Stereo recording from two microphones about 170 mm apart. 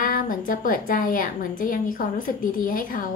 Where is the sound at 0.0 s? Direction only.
55° left (ahead or behind).